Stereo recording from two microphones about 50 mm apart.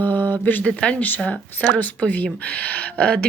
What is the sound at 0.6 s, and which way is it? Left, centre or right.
A woman's voice, left.